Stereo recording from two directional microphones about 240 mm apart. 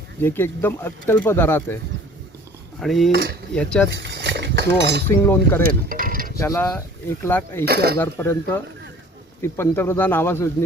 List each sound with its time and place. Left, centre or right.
0.2 s speech: centre
2.8 s speech: centre
3.8 s speech: right
5.0 s speech: centre
5.9 s a sound: right
6.4 s speech: centre
7.7 s speech: right
7.9 s speech: centre